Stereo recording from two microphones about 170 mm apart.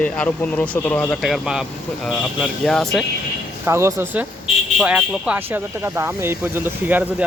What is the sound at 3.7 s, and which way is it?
Speech, 15° right (ahead or behind).